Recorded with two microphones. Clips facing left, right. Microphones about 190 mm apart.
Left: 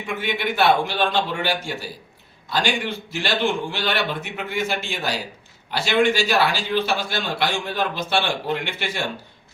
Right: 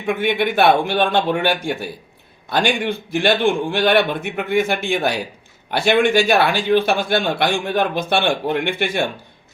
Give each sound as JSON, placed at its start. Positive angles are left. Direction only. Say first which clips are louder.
{"t": 0.0, "sound": "a man's voice", "louder": "right 7 dB", "side_deg": -55}